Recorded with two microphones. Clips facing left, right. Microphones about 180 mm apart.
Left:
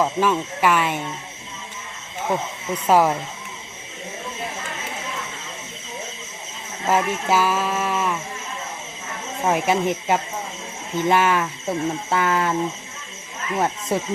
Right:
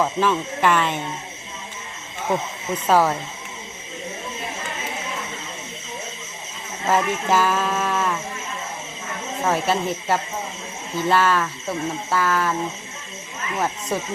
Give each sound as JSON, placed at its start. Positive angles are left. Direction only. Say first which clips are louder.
{"t": 0.0, "sound": "speech", "louder": "left 1 dB", "side_deg": 10}
{"t": 2.8, "sound": "speech", "louder": "left 1 dB", "side_deg": 15}
{"t": 6.8, "sound": "speech", "louder": "even", "side_deg": 10}
{"t": 9.4, "sound": "speech", "louder": "left 2 dB", "side_deg": 15}
{"t": 13.9, "sound": "speech", "louder": "left 3 dB", "side_deg": 25}